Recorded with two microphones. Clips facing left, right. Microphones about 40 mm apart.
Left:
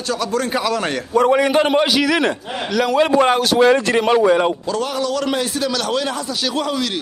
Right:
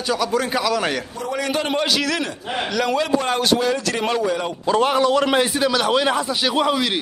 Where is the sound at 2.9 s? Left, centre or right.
Left.